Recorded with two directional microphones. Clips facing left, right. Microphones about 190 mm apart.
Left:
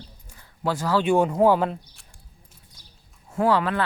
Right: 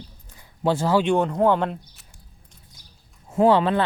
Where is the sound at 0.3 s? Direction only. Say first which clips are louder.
Right 4 dB; 20° right (ahead or behind).